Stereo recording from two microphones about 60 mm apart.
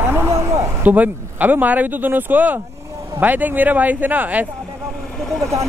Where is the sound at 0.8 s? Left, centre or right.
Right.